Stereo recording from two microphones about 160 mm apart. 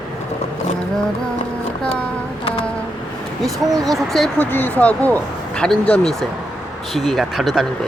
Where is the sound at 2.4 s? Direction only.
35° left (ahead or behind).